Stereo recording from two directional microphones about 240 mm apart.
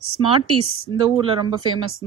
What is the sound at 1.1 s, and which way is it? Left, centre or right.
Speech, right.